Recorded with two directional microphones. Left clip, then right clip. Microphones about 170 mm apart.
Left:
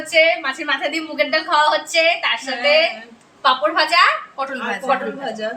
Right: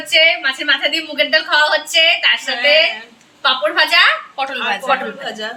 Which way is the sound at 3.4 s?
15° left (ahead or behind).